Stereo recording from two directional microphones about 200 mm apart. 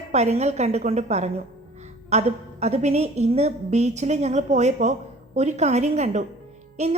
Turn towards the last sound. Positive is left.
turn(degrees=-30)  # may be behind; listen again after turning